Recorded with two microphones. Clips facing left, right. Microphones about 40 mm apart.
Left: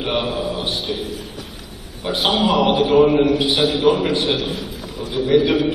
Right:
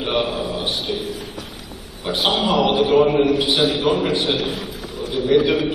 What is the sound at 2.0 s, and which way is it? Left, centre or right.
Speech, left.